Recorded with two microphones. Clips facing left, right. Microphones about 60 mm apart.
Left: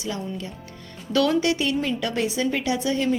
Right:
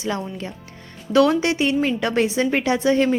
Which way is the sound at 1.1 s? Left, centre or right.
Right.